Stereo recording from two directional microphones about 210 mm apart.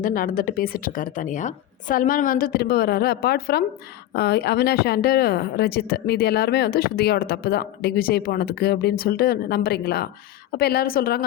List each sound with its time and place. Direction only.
0.0 s a woman's voice: 40° left (ahead or behind)